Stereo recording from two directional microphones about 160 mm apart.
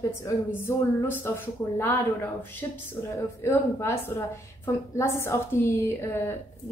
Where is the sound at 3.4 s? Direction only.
15° left (ahead or behind).